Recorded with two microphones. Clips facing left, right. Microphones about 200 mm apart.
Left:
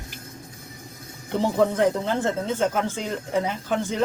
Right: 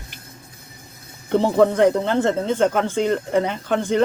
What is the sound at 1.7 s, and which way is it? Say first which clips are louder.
A woman's voice: right 5 dB; 5° left (ahead or behind).